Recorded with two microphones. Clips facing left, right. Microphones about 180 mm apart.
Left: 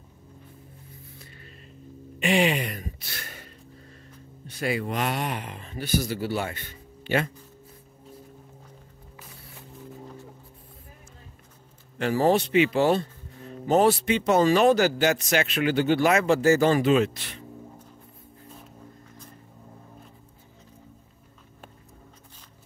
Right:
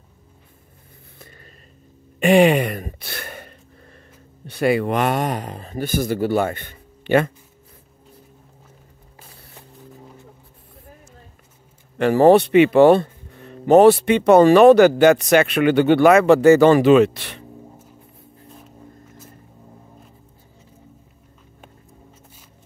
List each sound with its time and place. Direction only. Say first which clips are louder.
2.1 s a sound: right 9 dB; 50° right (ahead or behind)
4.5 s speech: right 9 dB; 65° right (ahead or behind)
12.0 s speech: right 9 dB; 60° right (ahead or behind)